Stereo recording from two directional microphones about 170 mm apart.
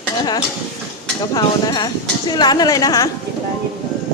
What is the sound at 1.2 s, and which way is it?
Speech, 20° left (ahead or behind).